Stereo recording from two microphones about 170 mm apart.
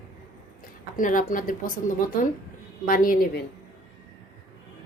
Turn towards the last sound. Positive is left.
turn(degrees=55)  # may be behind; listen again after turning